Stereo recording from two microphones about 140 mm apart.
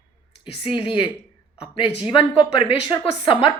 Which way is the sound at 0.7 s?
35° left (ahead or behind).